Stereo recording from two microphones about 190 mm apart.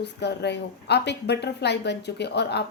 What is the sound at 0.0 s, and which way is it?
A woman's voice, 60° left (ahead or behind).